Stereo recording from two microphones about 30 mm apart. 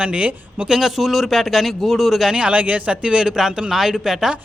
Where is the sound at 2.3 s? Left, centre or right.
Right.